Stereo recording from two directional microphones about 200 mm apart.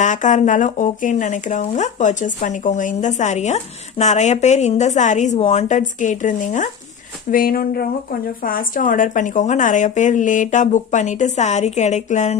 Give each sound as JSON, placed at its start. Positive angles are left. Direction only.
{"t": 0.0, "sound": "speech", "side_deg": 40}